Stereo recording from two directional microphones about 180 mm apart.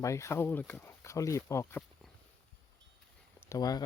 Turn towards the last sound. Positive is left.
turn(degrees=20)  # may be behind; listen again after turning